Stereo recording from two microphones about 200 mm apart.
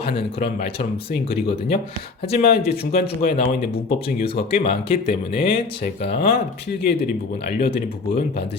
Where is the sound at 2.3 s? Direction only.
50° left (ahead or behind).